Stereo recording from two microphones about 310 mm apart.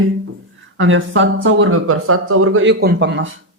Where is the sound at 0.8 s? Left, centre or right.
Right.